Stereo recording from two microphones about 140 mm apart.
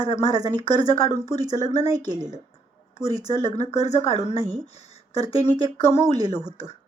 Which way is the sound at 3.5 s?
50° left (ahead or behind).